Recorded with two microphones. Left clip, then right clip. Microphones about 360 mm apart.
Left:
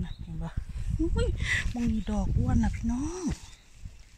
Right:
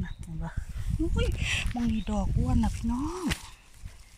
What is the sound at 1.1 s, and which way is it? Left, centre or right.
Speech, centre.